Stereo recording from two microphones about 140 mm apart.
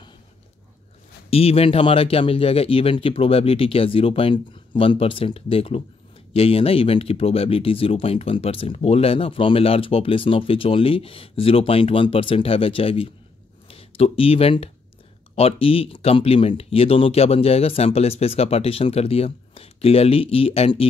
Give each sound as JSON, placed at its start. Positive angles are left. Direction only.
{"t": 1.3, "sound": "speech", "side_deg": 45}